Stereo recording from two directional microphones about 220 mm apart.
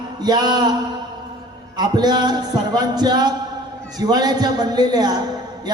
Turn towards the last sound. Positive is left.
turn(degrees=-20)  # may be behind; listen again after turning